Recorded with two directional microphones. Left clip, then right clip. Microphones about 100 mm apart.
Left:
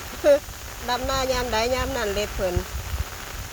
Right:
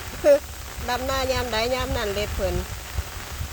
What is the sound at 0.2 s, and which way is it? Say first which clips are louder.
Speech: right 1 dB; 20° right (ahead or behind).